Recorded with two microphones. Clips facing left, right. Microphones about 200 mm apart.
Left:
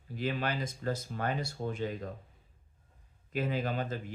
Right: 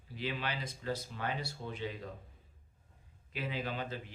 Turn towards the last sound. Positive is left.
turn(degrees=45)  # may be behind; listen again after turning